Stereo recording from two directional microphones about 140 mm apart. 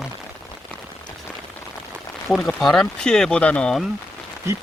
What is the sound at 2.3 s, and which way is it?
Speech, 5° left (ahead or behind).